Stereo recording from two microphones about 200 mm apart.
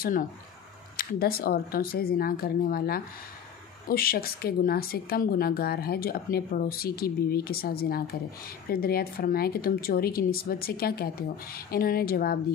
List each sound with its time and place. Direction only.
0.9 s speech: 50° left (ahead or behind)